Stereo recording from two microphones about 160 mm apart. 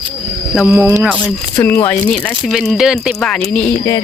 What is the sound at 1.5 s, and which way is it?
Speech, 15° left (ahead or behind).